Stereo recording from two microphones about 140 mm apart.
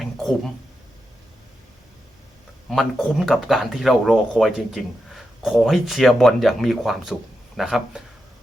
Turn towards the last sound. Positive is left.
turn(degrees=0)  # may be behind; listen again after turning